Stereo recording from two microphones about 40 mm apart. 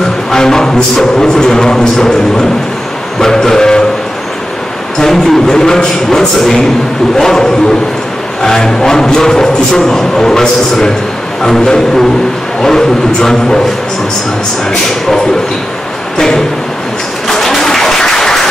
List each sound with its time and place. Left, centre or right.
0.3 s music: centre
3.2 s a sound: centre
4.9 s music: centre
17.3 s applause: centre